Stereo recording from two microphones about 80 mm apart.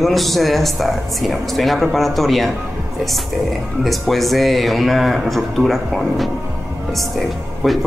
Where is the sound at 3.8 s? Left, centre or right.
Centre.